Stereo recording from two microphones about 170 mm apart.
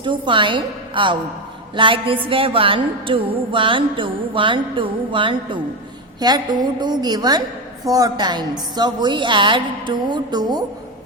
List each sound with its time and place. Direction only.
0.0 s a woman's voice: 30° right (ahead or behind)